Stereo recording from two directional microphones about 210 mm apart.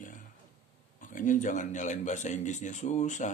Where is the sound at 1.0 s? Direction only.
40° left (ahead or behind).